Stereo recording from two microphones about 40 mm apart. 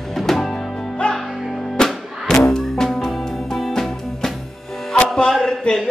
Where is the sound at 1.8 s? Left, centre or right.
Centre.